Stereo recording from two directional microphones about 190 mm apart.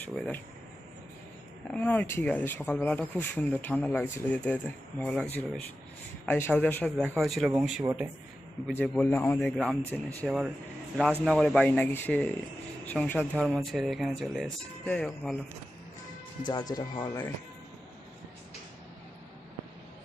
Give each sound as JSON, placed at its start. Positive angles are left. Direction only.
{"t": 0.0, "sound": "speech", "side_deg": 10}
{"t": 1.7, "sound": "speech", "side_deg": 5}
{"t": 8.7, "sound": "speech", "side_deg": 10}
{"t": 16.5, "sound": "speech", "side_deg": 20}